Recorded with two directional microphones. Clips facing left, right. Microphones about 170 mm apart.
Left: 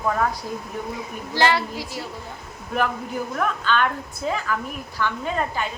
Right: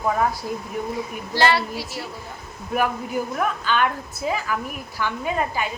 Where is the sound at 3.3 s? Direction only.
10° right (ahead or behind).